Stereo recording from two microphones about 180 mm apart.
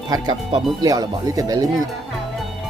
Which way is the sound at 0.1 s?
25° right (ahead or behind).